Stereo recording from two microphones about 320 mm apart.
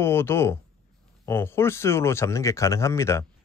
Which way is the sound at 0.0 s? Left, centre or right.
Centre.